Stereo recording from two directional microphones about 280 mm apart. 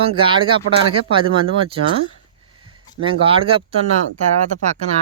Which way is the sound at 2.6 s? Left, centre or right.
Centre.